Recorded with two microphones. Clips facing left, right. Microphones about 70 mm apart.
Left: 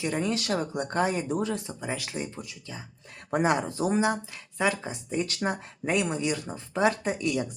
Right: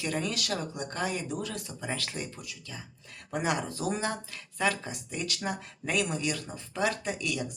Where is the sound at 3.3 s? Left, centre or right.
Left.